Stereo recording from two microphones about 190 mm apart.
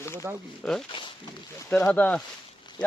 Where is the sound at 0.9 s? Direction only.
25° left (ahead or behind).